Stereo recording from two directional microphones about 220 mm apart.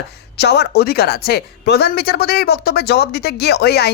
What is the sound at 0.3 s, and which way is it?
A woman's voice, 50° left (ahead or behind).